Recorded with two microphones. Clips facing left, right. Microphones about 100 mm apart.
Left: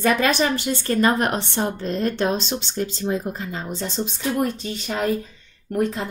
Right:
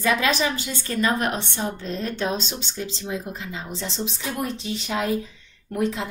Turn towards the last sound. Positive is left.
turn(degrees=50)  # may be behind; listen again after turning